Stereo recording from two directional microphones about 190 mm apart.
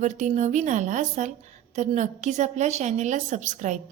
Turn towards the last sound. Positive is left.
turn(degrees=-40)  # may be behind; listen again after turning